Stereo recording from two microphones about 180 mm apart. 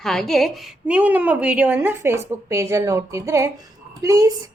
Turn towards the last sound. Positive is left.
turn(degrees=-20)  # may be behind; listen again after turning